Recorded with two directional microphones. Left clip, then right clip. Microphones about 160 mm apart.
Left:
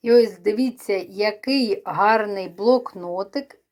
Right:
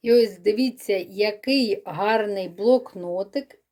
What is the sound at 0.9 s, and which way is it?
Speech, 40° right (ahead or behind).